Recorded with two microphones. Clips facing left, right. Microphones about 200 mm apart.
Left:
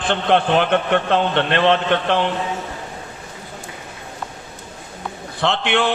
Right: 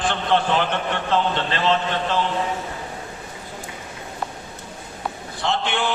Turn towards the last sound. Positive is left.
turn(degrees=65)  # may be behind; listen again after turning